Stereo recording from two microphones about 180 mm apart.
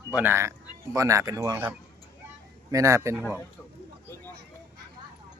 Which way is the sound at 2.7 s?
15° right (ahead or behind).